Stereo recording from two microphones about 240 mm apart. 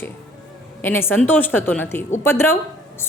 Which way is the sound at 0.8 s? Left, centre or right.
Centre.